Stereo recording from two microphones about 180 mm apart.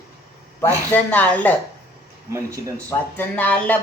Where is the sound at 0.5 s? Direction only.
10° left (ahead or behind).